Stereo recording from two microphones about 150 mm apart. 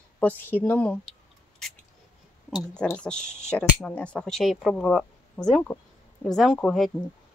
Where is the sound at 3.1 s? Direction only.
50° left (ahead or behind).